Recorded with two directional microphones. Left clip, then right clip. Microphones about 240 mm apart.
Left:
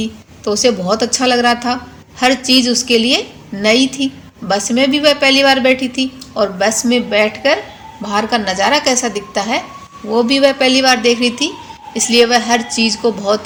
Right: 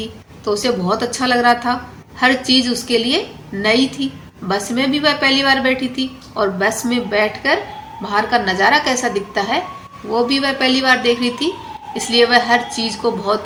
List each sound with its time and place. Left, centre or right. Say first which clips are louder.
0.0 s a woman's voice: left 3 dB; left